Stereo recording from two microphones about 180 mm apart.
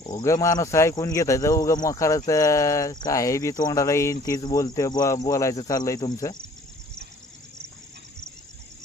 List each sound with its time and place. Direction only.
0.0 s speech: 20° left (ahead or behind)
3.6 s cricket: 20° left (ahead or behind)